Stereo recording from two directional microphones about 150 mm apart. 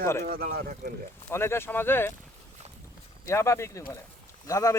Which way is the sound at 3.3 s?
20° left (ahead or behind).